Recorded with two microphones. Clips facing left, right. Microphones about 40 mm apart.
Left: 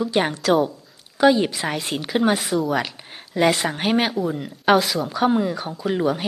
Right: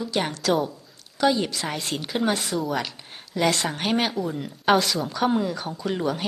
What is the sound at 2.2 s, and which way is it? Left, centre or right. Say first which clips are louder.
Speech: left 4 dB; centre.